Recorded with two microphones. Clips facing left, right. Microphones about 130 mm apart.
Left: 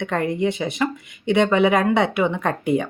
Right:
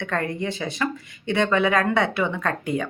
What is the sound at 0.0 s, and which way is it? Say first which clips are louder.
Speech: left 5 dB; 20° left (ahead or behind).